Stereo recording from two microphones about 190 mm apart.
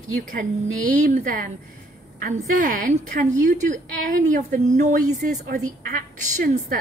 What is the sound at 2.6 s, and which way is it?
Speech, 45° right (ahead or behind).